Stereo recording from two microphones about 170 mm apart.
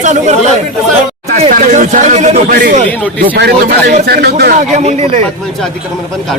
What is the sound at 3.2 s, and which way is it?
Speech, 70° right (ahead or behind).